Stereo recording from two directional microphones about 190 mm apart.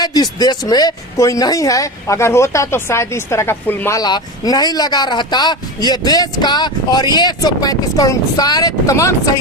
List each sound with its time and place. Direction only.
0.0 s speech: 20° left (ahead or behind)